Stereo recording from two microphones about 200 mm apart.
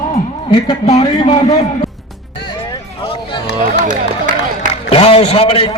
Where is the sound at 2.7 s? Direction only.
25° left (ahead or behind).